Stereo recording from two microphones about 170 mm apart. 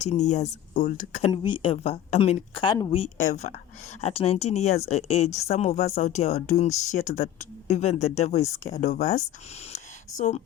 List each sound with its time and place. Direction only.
0.0 s speech: 45° left (ahead or behind)
1.3 s speech: 30° left (ahead or behind)
3.0 s speech: 45° left (ahead or behind)
9.7 s a sound: 45° left (ahead or behind)